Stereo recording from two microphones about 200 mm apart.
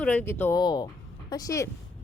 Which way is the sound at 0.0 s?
10° left (ahead or behind).